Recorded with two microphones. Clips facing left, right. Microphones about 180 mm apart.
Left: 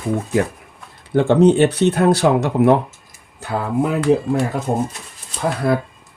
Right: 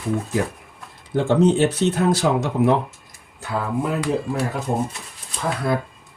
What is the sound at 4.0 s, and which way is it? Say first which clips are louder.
Speech: left 6 dB; centre (ahead or behind).